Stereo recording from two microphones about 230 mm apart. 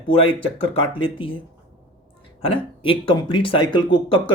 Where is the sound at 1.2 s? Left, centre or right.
Left.